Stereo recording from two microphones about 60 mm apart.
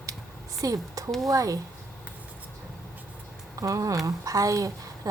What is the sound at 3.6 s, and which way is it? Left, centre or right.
A woman's voice, right.